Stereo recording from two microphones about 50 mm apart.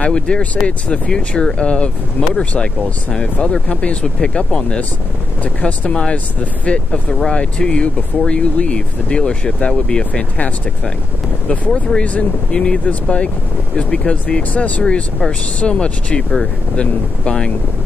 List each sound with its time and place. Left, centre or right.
0.0 s speech: centre
3.5 s speech: left
6.9 s speech: centre
11.4 s speech: left
12.5 s speech: centre